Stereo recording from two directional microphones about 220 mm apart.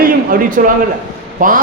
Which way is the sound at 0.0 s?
40° right (ahead or behind).